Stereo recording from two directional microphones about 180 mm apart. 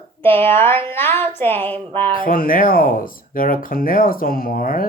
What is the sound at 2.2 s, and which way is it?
Speech, 55° left (ahead or behind).